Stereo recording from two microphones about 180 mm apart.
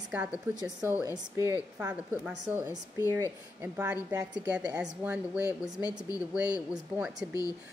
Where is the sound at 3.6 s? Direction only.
10° right (ahead or behind).